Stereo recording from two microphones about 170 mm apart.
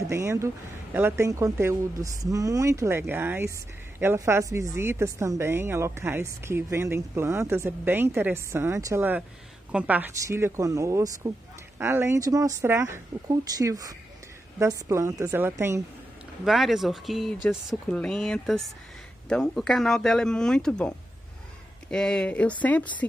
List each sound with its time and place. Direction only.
0.0 s a woman's voice: 15° right (ahead or behind)
16.4 s speech: centre (ahead or behind)
21.9 s speech: 5° left (ahead or behind)